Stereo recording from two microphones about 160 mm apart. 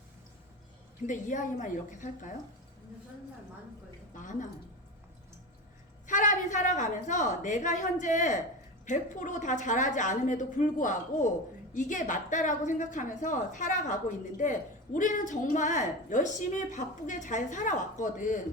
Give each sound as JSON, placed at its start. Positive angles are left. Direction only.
{"t": 1.0, "sound": "a woman's voice", "side_deg": 50}
{"t": 4.1, "sound": "a woman's voice", "side_deg": 50}
{"t": 6.1, "sound": "a woman's voice", "side_deg": 50}